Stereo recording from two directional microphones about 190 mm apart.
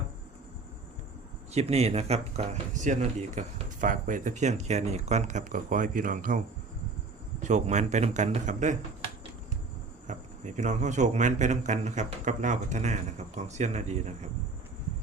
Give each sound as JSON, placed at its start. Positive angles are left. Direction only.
{"t": 1.5, "sound": "speech", "side_deg": -35}
{"t": 7.4, "sound": "speech", "side_deg": -40}
{"t": 10.1, "sound": "speech", "side_deg": -40}